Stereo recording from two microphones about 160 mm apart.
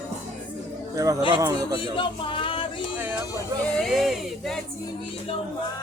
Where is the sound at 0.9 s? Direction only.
20° right (ahead or behind).